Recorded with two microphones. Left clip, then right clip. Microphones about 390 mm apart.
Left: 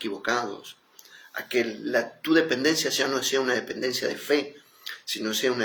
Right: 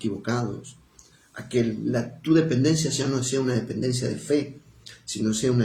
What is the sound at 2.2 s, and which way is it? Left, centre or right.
Speech, right.